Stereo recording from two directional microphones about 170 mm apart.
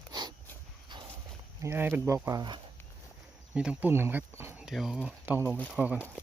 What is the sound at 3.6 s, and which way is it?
Speech, 10° right (ahead or behind).